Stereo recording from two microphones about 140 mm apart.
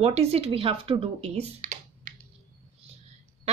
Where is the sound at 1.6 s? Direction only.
60° right (ahead or behind).